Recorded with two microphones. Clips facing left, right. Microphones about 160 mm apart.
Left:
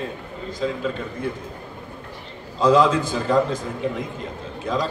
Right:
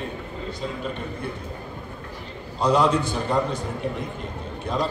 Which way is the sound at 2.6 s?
90° left.